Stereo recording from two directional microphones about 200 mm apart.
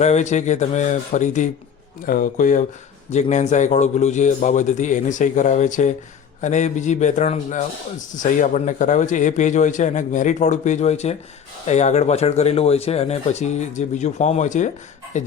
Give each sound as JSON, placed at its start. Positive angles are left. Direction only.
{"t": 0.0, "sound": "a man's voice", "side_deg": 35}